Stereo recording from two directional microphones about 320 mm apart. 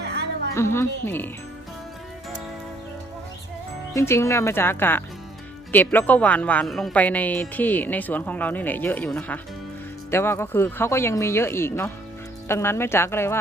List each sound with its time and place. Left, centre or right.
0.0 s music: right
0.5 s speech: centre
3.9 s speech: centre